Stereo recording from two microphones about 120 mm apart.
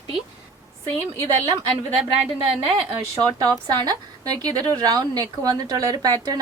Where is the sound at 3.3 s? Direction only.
35° right (ahead or behind).